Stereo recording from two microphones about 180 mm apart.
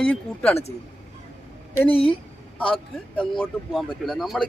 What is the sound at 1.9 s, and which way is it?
Speech, 30° left (ahead or behind).